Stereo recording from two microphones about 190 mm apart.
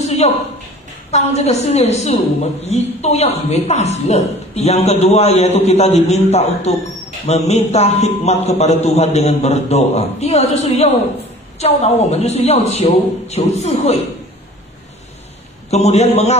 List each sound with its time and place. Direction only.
0.0 s a sound: 35° left (ahead or behind)
1.1 s a man's voice: 35° left (ahead or behind)
15.7 s a man's voice: 35° left (ahead or behind)